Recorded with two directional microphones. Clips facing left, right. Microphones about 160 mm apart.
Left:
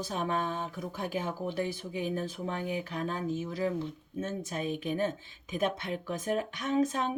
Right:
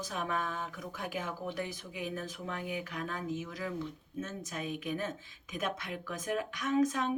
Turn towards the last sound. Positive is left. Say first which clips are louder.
# left 1 dB
turn(degrees=30)  # may be behind; listen again after turning